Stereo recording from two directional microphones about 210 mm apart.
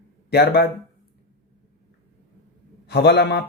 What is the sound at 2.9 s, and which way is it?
Speech, 50° left (ahead or behind).